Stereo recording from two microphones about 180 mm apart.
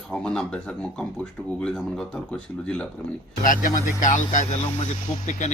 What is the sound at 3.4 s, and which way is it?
Speech, 50° left (ahead or behind).